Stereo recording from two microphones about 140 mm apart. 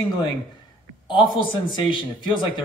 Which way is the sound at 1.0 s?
35° left (ahead or behind).